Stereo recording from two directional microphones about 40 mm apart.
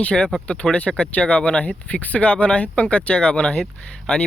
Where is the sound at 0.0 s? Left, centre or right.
Left.